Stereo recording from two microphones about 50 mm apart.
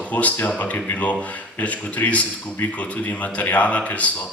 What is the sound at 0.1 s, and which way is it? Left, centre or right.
Speech, left.